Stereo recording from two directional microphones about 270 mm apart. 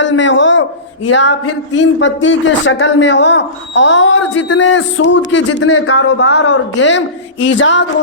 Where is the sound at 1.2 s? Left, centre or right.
Left.